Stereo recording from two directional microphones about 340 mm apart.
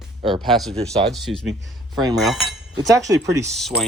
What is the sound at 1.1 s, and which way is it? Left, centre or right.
Speech, centre.